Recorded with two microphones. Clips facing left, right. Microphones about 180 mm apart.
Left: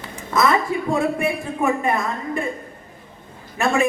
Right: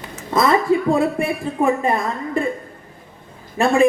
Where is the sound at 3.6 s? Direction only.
30° right (ahead or behind).